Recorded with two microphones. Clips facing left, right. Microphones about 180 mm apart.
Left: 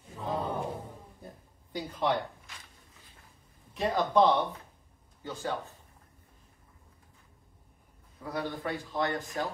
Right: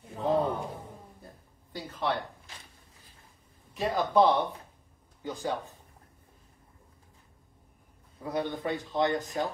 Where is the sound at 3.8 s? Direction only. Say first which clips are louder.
Right 1 dB; 10° right (ahead or behind).